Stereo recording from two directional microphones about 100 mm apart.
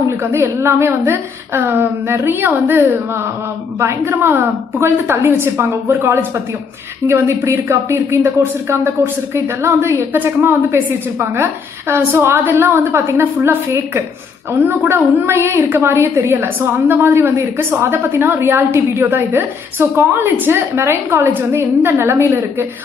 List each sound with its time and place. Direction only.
0.2 s speech: 25° right (ahead or behind)
3.8 s speech: 30° right (ahead or behind)